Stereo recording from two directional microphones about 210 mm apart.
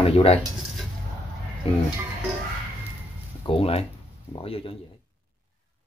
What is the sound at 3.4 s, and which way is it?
Speech, 25° left (ahead or behind).